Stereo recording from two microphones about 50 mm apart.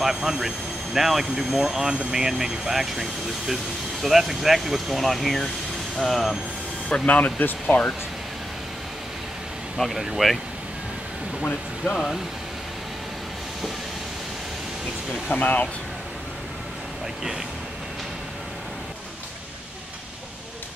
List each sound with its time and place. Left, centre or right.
0.0 s speech: centre
6.9 s speech: left
9.8 s speech: centre
11.8 s speech: centre
15.3 s speech: left